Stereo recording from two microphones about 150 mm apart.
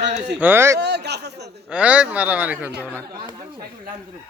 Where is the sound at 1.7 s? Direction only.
10° right (ahead or behind).